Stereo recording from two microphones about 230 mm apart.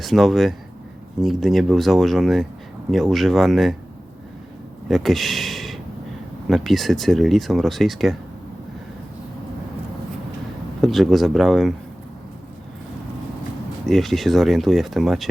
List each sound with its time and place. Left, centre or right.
0.0 s speech: centre
4.9 s speech: centre
10.8 s speech: centre
13.8 s speech: centre